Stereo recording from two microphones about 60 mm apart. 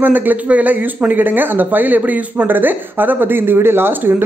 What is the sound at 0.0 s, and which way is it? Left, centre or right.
Speech, right.